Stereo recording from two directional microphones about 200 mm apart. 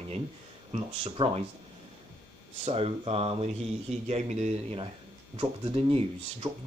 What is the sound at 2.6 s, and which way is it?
Speech, 30° right (ahead or behind).